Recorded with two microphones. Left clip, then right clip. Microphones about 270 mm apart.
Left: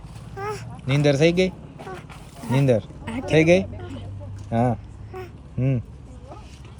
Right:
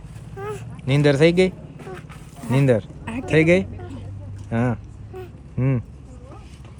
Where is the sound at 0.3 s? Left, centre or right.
Centre.